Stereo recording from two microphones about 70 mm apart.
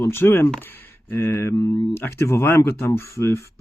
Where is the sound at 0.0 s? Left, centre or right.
Left.